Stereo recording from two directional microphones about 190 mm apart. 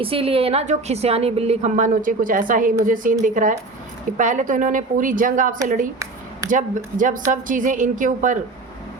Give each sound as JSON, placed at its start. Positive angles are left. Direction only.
{"t": 0.0, "sound": "a woman's voice", "side_deg": -30}